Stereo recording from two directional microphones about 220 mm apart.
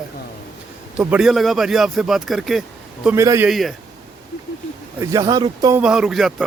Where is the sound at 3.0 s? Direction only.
15° right (ahead or behind).